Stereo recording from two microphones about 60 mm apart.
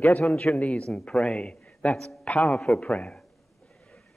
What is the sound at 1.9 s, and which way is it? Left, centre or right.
Speech, centre.